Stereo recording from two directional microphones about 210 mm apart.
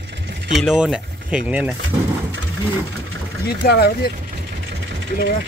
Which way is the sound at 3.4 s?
50° left (ahead or behind).